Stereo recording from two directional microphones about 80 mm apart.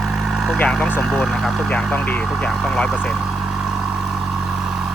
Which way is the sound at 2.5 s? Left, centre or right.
Centre.